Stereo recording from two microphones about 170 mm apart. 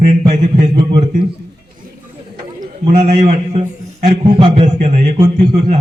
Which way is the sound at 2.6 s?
65° right (ahead or behind).